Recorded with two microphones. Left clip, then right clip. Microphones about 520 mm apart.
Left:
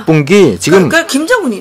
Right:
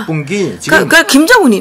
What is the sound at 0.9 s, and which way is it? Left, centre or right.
Speech, right.